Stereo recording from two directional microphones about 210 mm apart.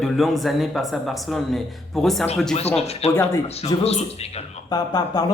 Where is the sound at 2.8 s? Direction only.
30° left (ahead or behind).